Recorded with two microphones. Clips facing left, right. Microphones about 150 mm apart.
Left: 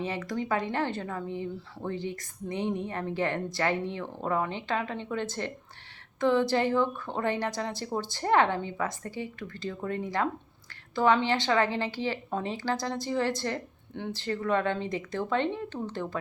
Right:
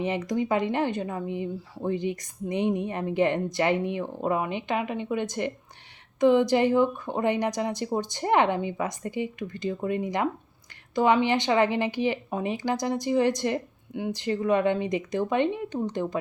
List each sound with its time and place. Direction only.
0.0 s speech: 20° right (ahead or behind)